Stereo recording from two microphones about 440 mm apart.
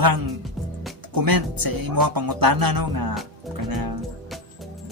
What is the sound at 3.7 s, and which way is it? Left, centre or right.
Music, right.